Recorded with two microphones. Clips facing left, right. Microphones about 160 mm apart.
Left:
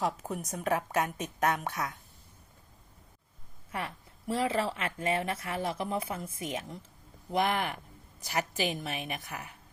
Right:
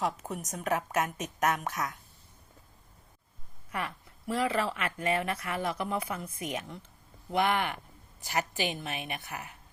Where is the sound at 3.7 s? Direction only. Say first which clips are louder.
Right 1 dB; 30° left (ahead or behind).